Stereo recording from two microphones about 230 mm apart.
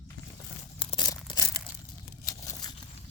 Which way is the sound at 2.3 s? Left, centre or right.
Centre.